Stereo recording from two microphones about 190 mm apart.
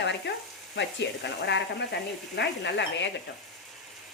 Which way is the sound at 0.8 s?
70° left (ahead or behind).